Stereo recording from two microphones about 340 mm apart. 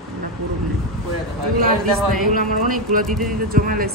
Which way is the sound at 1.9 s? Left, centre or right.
Centre.